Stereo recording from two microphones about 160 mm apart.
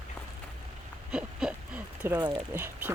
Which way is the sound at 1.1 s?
5° right (ahead or behind).